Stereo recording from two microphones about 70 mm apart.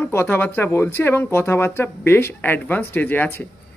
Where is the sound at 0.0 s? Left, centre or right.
Left.